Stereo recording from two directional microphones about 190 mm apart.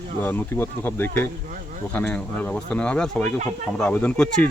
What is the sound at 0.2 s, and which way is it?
Speech, 10° left (ahead or behind).